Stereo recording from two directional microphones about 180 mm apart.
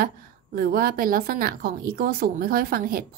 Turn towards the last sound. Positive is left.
turn(degrees=-55)  # may be behind; listen again after turning